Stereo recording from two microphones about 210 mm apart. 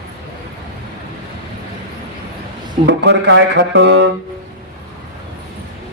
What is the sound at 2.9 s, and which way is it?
Speech, 55° right (ahead or behind).